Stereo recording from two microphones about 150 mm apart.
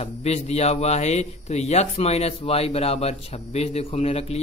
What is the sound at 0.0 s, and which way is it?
Speech, 45° left (ahead or behind).